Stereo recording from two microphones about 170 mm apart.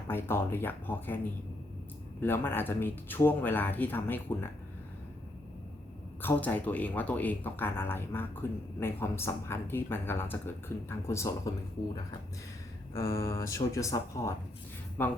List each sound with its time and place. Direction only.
0.1 s speech: 15° left (ahead or behind)
6.2 s speech: 10° left (ahead or behind)
12.9 s speech: 15° left (ahead or behind)